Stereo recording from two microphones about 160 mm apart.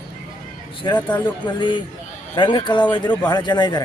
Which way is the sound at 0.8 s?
25° left (ahead or behind).